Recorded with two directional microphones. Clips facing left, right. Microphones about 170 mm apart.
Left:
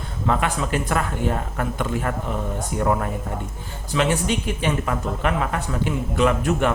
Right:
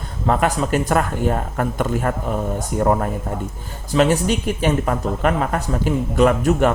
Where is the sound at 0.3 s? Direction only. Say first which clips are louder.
Right 4 dB; 45° right (ahead or behind).